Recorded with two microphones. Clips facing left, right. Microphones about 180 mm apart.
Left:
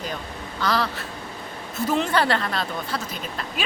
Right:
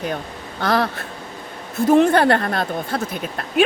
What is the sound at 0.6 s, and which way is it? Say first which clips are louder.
A woman's voice: right 5 dB; 55° right (ahead or behind).